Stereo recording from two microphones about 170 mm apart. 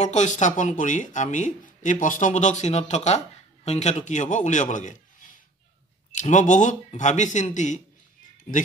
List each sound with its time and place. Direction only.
0.0 s a man's voice: 45° left (ahead or behind)